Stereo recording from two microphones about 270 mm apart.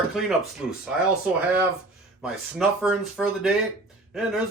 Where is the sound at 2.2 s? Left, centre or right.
Centre.